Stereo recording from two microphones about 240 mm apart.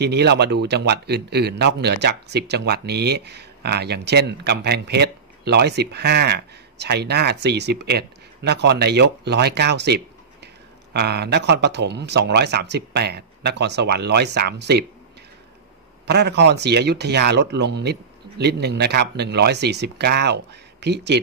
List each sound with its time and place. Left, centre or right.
0.0 s speech: right
16.1 s speech: right